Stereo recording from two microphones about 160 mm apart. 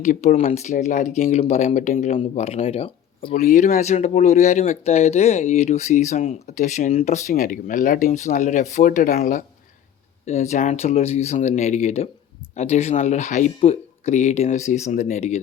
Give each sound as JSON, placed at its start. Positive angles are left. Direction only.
{"t": 0.0, "sound": "speech", "side_deg": 50}
{"t": 2.1, "sound": "speech", "side_deg": 40}
{"t": 3.3, "sound": "speech", "side_deg": 50}
{"t": 10.2, "sound": "speech", "side_deg": 45}